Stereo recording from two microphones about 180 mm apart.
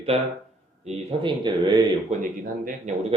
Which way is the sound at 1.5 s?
25° right (ahead or behind).